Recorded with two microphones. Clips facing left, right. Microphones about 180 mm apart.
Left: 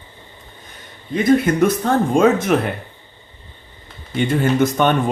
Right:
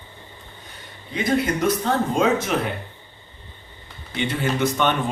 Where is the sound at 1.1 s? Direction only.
50° left (ahead or behind).